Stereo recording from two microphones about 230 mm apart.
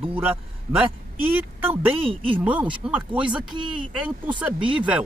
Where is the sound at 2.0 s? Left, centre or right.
Right.